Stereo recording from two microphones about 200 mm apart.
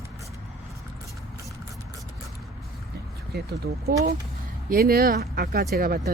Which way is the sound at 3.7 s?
55° right (ahead or behind).